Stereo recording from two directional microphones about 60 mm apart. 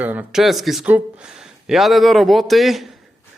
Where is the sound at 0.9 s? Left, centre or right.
Right.